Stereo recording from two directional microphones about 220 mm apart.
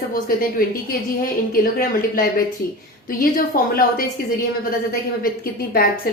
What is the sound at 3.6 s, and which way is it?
Speech, 40° left (ahead or behind).